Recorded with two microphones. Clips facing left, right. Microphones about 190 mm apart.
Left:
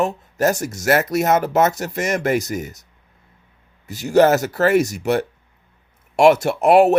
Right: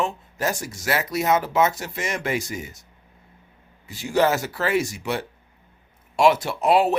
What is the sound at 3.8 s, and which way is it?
Speech, 40° left (ahead or behind).